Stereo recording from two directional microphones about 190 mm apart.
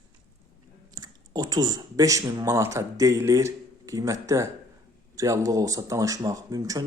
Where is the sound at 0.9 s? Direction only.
20° right (ahead or behind).